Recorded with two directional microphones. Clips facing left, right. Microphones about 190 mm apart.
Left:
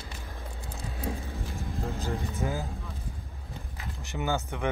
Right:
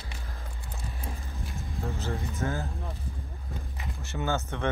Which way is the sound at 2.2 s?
15° left (ahead or behind).